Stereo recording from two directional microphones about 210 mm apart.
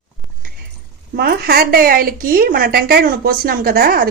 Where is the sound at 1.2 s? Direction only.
45° right (ahead or behind).